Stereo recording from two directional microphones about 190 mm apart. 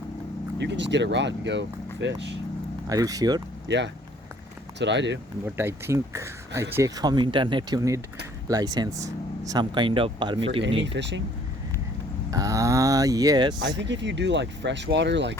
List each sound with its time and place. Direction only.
0.6 s speech: 65° right (ahead or behind)
2.8 s speech: 20° right (ahead or behind)
3.7 s speech: 70° right (ahead or behind)
5.5 s speech: 10° right (ahead or behind); by 10.6 s 30° right (ahead or behind)
10.8 s speech: 70° right (ahead or behind)
12.3 s speech: 15° right (ahead or behind)
13.6 s speech: 70° right (ahead or behind)